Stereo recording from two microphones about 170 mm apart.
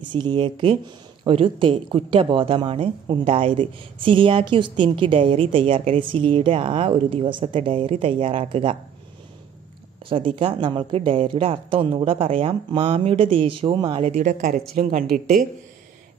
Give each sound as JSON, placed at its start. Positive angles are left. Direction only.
{"t": 0.0, "sound": "speech", "side_deg": -25}
{"t": 10.0, "sound": "speech", "side_deg": -30}